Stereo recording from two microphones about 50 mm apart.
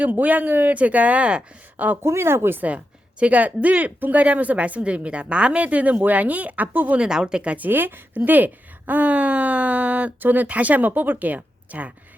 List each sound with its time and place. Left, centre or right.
0.0 s speech: right
1.7 s speech: right
2.0 s speech: right
2.6 s speech: right
7.0 s a woman's voice: centre
7.5 s a woman's voice: right